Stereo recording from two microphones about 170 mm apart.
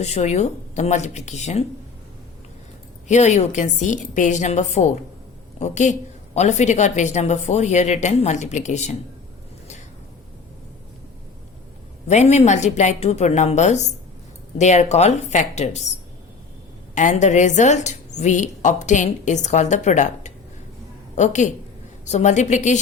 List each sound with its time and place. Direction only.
0.0 s speech: 40° left (ahead or behind)
3.1 s a woman's voice: 45° left (ahead or behind)
12.0 s a woman's voice: 40° left (ahead or behind)
16.9 s a woman's voice: 45° left (ahead or behind)